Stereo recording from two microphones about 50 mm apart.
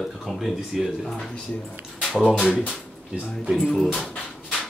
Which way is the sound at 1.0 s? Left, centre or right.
Centre.